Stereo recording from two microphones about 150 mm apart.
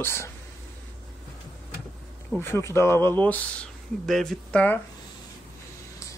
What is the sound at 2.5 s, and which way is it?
Speech, 15° left (ahead or behind).